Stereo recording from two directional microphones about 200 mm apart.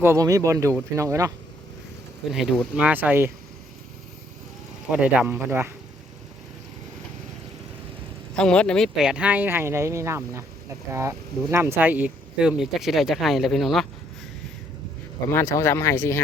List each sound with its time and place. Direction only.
0.0 s speech: 15° right (ahead or behind)
2.3 s speech: centre (ahead or behind)
4.9 s speech: 5° right (ahead or behind)
8.4 s speech: 5° left (ahead or behind); by 10.4 s 15° right (ahead or behind)
11.8 s speech: 10° right (ahead or behind)
15.3 s speech: 15° left (ahead or behind)